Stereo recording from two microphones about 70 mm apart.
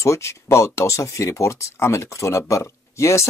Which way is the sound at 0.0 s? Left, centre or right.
Left.